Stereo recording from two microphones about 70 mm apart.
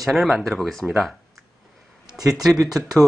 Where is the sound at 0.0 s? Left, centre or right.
Centre.